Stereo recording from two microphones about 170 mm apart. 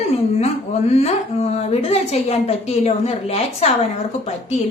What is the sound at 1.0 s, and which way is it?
A woman's voice, 40° left (ahead or behind).